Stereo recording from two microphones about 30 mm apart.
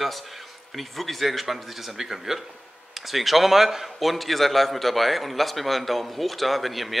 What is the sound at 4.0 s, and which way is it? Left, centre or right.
A man's voice, centre.